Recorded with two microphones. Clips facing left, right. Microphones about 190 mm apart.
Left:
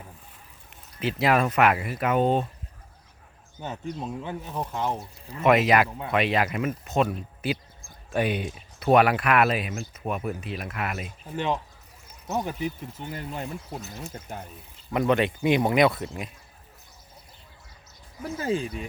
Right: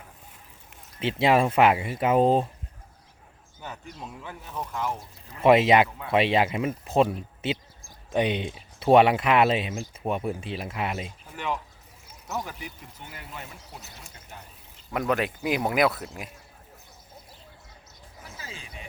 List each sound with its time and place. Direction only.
0.9 s speech: 25° right (ahead or behind)
3.6 s speech: 25° left (ahead or behind)
5.4 s speech: 30° right (ahead or behind)
11.3 s speech: 25° left (ahead or behind)
14.1 s speech: 50° left (ahead or behind)
14.9 s speech: centre (ahead or behind)
18.2 s speech: 55° left (ahead or behind)